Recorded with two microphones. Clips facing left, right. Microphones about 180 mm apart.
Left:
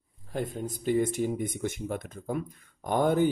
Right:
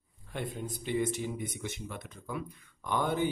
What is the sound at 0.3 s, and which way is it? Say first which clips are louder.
Speech: left 5 dB; 45° left (ahead or behind).